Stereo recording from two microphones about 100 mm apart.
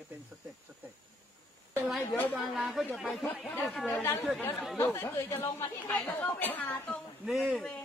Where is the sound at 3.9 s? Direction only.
20° left (ahead or behind).